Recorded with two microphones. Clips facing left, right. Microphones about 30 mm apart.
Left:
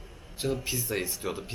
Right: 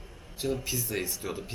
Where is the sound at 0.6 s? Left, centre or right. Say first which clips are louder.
Left 1 dB; centre.